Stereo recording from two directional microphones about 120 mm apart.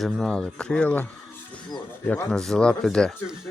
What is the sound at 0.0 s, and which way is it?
Speech, centre (ahead or behind).